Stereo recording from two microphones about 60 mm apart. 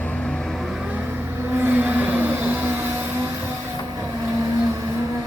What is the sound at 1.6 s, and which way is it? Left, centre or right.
Vehicle, right.